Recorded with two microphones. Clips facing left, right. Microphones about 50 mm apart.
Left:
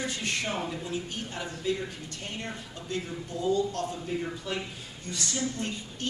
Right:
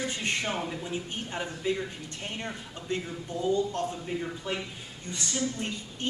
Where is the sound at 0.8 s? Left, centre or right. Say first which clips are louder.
Even; right.